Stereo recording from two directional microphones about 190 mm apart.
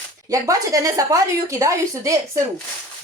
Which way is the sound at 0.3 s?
15° right (ahead or behind).